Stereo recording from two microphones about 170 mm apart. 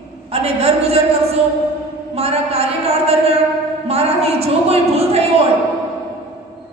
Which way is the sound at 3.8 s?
35° right (ahead or behind).